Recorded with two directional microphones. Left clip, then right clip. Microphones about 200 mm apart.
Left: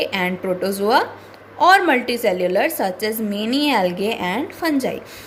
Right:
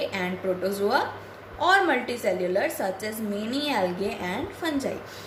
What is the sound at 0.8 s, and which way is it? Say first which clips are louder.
A woman's voice: left 10 dB; 45° left (ahead or behind).